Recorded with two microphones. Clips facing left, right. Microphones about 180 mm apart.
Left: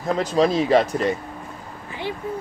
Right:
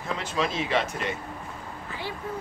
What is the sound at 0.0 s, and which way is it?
Speech, 40° left (ahead or behind).